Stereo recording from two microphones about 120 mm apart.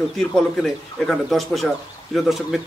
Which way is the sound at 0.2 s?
5° left (ahead or behind).